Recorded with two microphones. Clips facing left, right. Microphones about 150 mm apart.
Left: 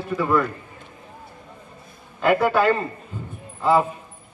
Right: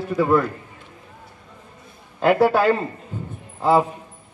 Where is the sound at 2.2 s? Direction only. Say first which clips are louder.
Right 3 dB; 35° right (ahead or behind).